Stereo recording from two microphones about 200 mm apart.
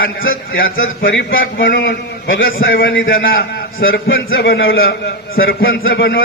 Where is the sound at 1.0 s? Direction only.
70° left (ahead or behind).